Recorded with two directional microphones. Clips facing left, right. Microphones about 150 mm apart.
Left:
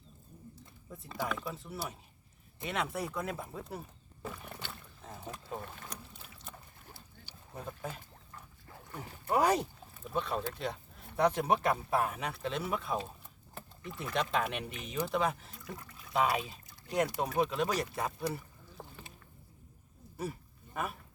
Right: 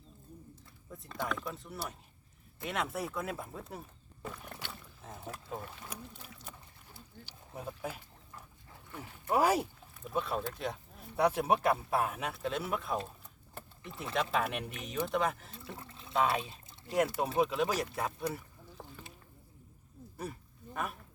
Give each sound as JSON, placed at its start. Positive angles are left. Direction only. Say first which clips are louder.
{"t": 0.9, "sound": "speech", "louder": "even", "side_deg": 5}
{"t": 7.5, "sound": "pig", "louder": "right 1 dB", "side_deg": -10}
{"t": 9.3, "sound": "speech", "louder": "even", "side_deg": -5}
{"t": 13.5, "sound": "a sound", "louder": "left 2 dB", "side_deg": 0}
{"t": 14.0, "sound": "speech", "louder": "even", "side_deg": 0}
{"t": 15.5, "sound": "trickle", "louder": "even", "side_deg": -30}
{"t": 16.1, "sound": "speech", "louder": "even", "side_deg": 0}
{"t": 18.3, "sound": "rowboat", "louder": "left 1 dB", "side_deg": 0}